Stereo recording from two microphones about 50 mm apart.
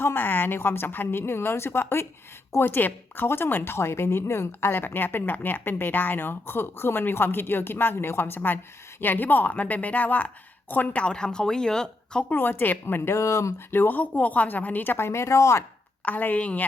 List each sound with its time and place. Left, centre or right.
0.0 s speech: left
9.0 s a woman's voice: left
10.9 s speech: centre
12.3 s a woman's voice: left
12.8 s speech: left
13.1 s speech: left
13.7 s a woman's voice: left
14.9 s speech: left
16.0 s a woman's voice: left